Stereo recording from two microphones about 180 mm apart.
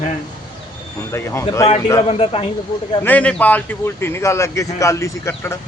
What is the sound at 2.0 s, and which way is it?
Speech, 35° left (ahead or behind).